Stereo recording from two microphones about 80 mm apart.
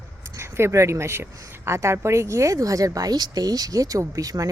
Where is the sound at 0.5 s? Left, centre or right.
Right.